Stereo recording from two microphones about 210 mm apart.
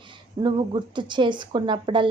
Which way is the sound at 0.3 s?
20° right (ahead or behind).